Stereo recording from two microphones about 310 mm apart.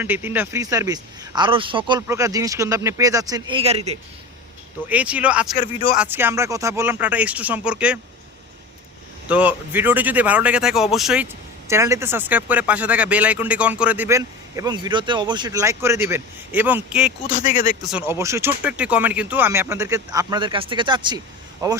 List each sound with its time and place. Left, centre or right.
0.0 s speech: centre
4.9 s speech: centre
5.5 s speech: left
6.0 s speech: centre
9.3 s speech: centre
17.4 s speech: left
17.9 s speech: centre